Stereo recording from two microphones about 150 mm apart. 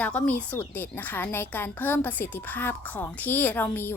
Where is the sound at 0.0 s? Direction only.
10° left (ahead or behind).